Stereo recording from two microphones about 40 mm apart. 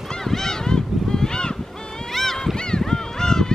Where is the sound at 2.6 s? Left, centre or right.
Centre.